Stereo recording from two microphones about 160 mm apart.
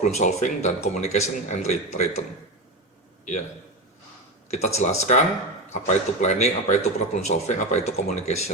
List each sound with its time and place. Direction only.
0.0 s speech: 45° left (ahead or behind)
4.4 s speech: 45° left (ahead or behind)